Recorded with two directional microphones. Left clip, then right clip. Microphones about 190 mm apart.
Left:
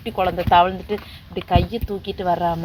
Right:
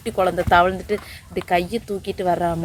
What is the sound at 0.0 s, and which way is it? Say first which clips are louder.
A woman's voice: right 1 dB; 20° right (ahead or behind).